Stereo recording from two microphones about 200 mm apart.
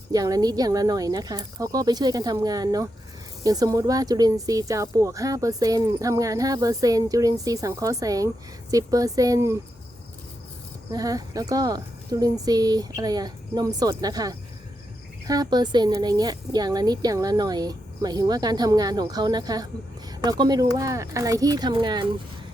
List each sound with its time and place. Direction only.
0.1 s a woman's voice: 20° right (ahead or behind)
10.9 s a woman's voice: 20° right (ahead or behind)